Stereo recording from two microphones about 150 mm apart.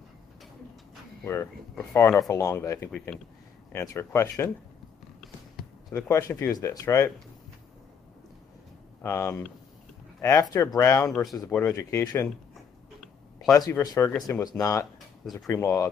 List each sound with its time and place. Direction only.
1.2 s speech: 15° left (ahead or behind)
6.0 s speech: 20° left (ahead or behind)
9.0 s speech: 20° left (ahead or behind)
10.5 s speech: 20° left (ahead or behind)
13.5 s speech: 25° left (ahead or behind)